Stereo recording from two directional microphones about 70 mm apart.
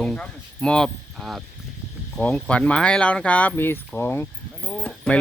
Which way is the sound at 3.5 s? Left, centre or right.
Left.